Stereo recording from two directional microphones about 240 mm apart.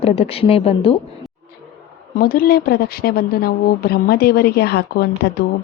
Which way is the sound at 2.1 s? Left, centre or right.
Left.